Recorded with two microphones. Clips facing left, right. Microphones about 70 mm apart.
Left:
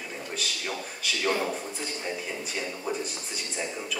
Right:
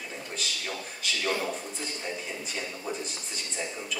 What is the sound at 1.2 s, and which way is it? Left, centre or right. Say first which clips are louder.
Speech: left 3 dB; centre.